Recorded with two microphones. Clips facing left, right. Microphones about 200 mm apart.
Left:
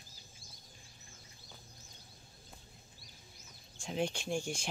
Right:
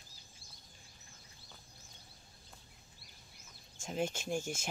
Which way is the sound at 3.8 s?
5° right (ahead or behind).